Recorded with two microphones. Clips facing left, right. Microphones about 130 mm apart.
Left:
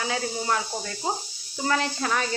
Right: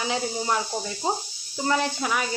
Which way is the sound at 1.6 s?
10° right (ahead or behind).